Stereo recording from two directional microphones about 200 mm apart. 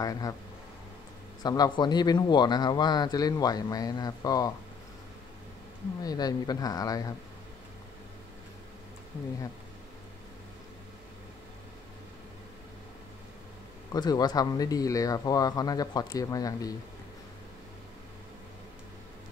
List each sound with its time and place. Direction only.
0.0 s speech: 20° left (ahead or behind)
1.4 s speech: 20° left (ahead or behind)
6.0 s speech: 20° left (ahead or behind)
13.9 s speech: 20° left (ahead or behind)